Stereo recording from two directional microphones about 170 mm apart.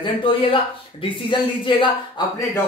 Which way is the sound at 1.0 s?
30° left (ahead or behind).